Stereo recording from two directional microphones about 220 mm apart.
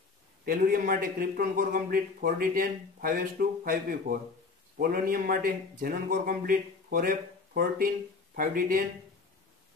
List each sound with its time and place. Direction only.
0.5 s speech: 40° right (ahead or behind)